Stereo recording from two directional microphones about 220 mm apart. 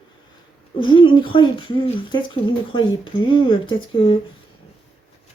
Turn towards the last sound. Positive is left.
turn(degrees=20)  # may be behind; listen again after turning